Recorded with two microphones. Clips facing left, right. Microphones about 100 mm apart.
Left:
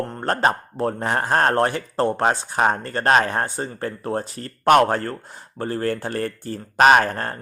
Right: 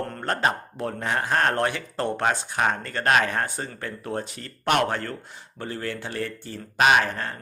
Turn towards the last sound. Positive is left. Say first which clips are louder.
# left 5 dB
turn(degrees=45)  # may be behind; listen again after turning